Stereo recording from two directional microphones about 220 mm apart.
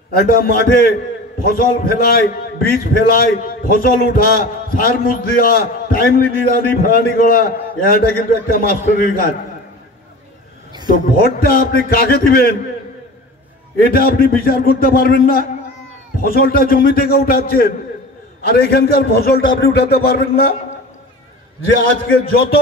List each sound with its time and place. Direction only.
0.1 s a man's voice: 45° left (ahead or behind)
10.9 s a man's voice: 40° left (ahead or behind)
13.7 s a man's voice: 40° left (ahead or behind)